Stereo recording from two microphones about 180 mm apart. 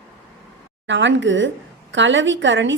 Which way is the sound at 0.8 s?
90° right.